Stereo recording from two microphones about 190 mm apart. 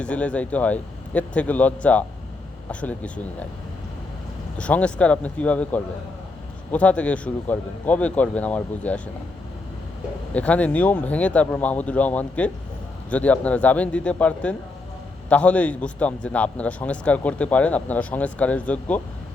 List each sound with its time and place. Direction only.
0.0 s a man's voice: 5° left (ahead or behind)
4.5 s a man's voice: 5° left (ahead or behind)
10.3 s a man's voice: 5° left (ahead or behind)